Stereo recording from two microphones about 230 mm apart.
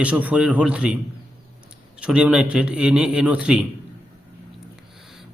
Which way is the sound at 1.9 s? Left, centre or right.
Centre.